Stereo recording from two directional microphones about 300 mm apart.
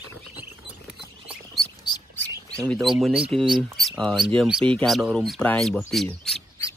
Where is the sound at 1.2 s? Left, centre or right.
Centre.